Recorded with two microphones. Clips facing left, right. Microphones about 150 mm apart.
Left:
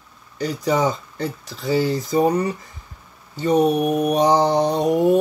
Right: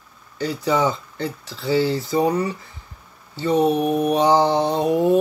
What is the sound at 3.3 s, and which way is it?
Speech, 40° left (ahead or behind).